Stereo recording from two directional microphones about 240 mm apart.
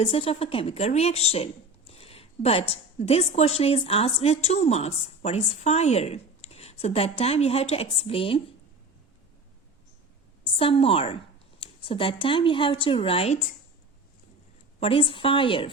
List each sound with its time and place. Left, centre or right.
0.0 s a woman's voice: left
10.4 s a woman's voice: left
14.8 s a woman's voice: left